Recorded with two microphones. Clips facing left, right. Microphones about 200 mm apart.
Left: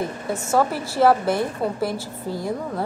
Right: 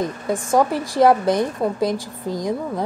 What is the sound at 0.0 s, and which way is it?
A woman's voice, 15° right (ahead or behind).